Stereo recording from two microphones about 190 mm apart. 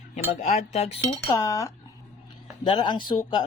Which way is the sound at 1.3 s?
20° left (ahead or behind).